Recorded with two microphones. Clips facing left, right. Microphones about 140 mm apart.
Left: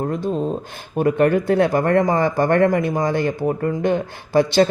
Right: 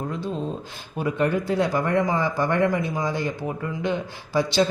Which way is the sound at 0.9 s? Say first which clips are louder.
Left 7 dB; 55° left (ahead or behind).